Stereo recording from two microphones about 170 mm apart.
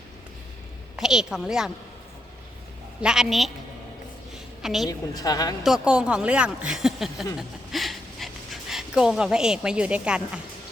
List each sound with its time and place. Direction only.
0.9 s a woman's voice: 5° right (ahead or behind)
3.0 s a woman's voice: 5° right (ahead or behind)
4.6 s a woman's voice: centre (ahead or behind)
4.9 s a woman's voice: 20° left (ahead or behind)
5.6 s a woman's voice: 5° right (ahead or behind)
7.3 s a sound: centre (ahead or behind)
8.7 s a woman's voice: 5° right (ahead or behind)